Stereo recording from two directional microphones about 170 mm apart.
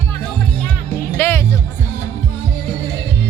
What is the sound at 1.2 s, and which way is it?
Music, 15° left (ahead or behind).